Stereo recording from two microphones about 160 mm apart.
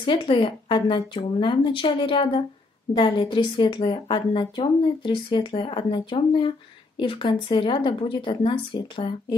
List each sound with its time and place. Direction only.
0.0 s a woman's voice: 30° left (ahead or behind)